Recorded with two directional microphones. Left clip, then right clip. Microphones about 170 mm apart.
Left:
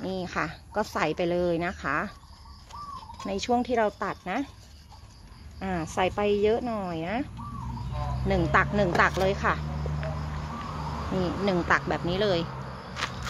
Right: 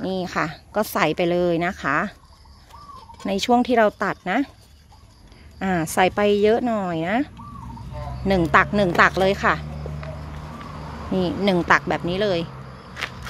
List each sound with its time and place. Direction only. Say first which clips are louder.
0.1 s speech: right 6 dB; 55° right (ahead or behind)
3.3 s speech: right 7 dB; 60° right (ahead or behind)
5.6 s speech: right 8 dB; 70° right (ahead or behind)
8.3 s speech: right 7 dB; 60° right (ahead or behind)
11.1 s speech: right 7 dB; 55° right (ahead or behind)
12.1 s speech: right 3 dB; 35° right (ahead or behind)
12.9 s a sound: right 3 dB; 15° right (ahead or behind)